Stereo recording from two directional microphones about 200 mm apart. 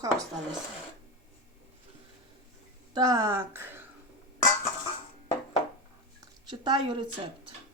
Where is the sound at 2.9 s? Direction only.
20° right (ahead or behind).